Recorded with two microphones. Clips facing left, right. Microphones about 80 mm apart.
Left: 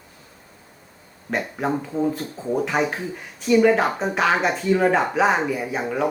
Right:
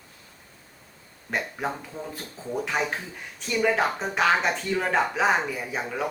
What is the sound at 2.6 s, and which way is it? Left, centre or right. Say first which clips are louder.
Speech: left 3 dB; centre.